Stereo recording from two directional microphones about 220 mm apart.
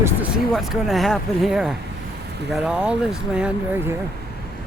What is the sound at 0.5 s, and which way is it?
Speech, centre (ahead or behind).